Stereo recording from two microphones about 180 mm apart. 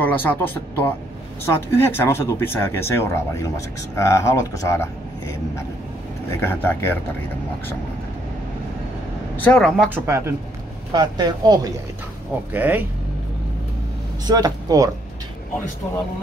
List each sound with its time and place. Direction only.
0.0 s speech: 10° left (ahead or behind)
6.4 s speech: 10° left (ahead or behind)
9.4 s speech: 5° left (ahead or behind)
9.8 s speech: 15° right (ahead or behind)
12.5 s speech: 10° right (ahead or behind)
14.2 s speech: 20° right (ahead or behind)